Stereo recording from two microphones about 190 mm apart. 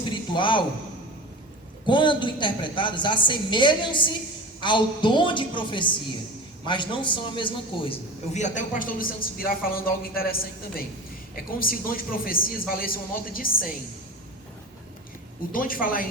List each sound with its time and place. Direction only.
0.1 s a sound: 25° left (ahead or behind)
1.9 s a woman's voice: 25° left (ahead or behind); by 13.7 s 50° left (ahead or behind)
15.5 s a man's voice: 50° left (ahead or behind)